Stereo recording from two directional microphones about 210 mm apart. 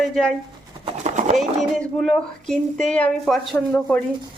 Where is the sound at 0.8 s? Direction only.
35° right (ahead or behind).